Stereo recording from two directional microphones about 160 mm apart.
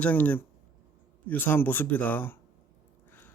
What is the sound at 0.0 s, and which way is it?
Speech, 10° left (ahead or behind).